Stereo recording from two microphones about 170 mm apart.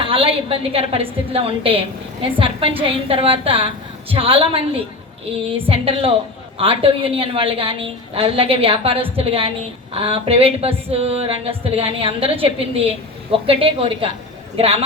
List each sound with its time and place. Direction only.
0.0 s speech: 35° right (ahead or behind)